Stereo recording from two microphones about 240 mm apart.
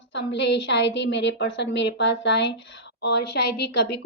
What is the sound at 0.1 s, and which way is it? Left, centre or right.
A woman's voice, left.